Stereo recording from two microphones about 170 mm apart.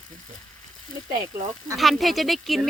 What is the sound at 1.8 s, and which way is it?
Speech, centre (ahead or behind).